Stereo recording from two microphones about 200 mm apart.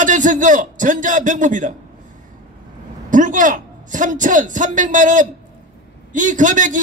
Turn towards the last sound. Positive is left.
turn(degrees=-40)  # may be behind; listen again after turning